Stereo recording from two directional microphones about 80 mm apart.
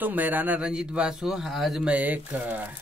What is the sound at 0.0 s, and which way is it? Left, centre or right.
Speech, right.